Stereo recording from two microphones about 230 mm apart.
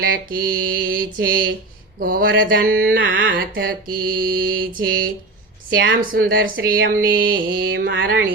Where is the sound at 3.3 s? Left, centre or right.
Right.